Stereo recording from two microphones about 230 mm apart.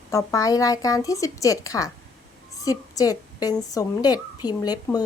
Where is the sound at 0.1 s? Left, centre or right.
Centre.